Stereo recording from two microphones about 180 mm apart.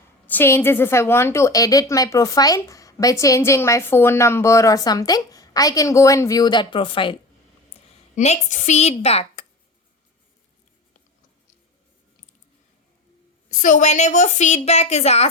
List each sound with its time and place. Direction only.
0.3 s a woman's voice: 10° left (ahead or behind); by 7.2 s 30° left (ahead or behind)
8.1 s a woman's voice: 40° left (ahead or behind)
13.5 s a woman's voice: 45° left (ahead or behind)